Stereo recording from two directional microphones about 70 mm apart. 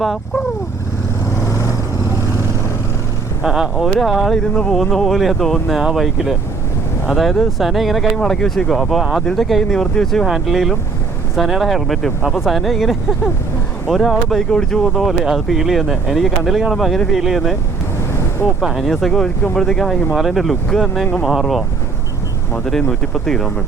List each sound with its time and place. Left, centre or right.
1.4 s vehicle: left
3.4 s speech: centre
3.8 s speech: centre
10.2 s speech: centre
18.6 s speech: centre
22.9 s speech: centre